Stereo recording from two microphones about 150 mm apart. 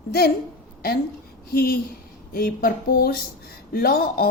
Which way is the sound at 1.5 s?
90° left.